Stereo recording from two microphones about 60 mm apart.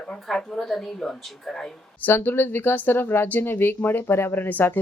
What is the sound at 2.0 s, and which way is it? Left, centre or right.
Speech, left.